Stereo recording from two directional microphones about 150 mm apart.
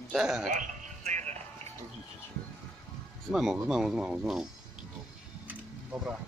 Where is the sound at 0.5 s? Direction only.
55° right (ahead or behind).